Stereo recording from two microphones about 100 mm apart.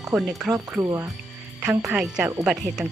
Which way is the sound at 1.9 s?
15° right (ahead or behind).